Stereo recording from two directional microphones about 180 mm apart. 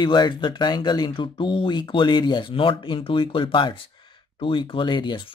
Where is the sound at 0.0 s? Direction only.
25° left (ahead or behind).